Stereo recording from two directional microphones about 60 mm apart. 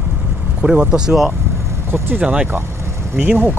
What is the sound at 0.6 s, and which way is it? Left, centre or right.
Speech, centre.